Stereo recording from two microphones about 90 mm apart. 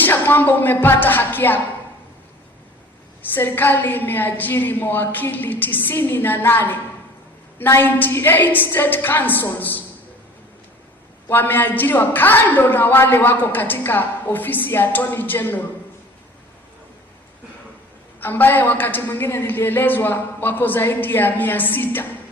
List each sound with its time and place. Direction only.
0.0 s a woman's voice: 20° left (ahead or behind)
3.2 s a woman's voice: 20° left (ahead or behind)
11.3 s a woman's voice: 25° left (ahead or behind)
18.2 s a woman's voice: 20° left (ahead or behind)